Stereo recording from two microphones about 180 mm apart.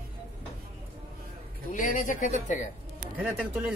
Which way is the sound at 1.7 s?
45° left (ahead or behind).